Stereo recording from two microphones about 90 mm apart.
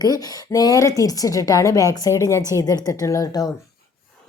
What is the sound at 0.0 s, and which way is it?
A woman's voice, 45° left (ahead or behind).